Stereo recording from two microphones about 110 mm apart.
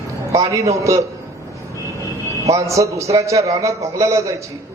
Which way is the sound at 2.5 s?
30° right (ahead or behind).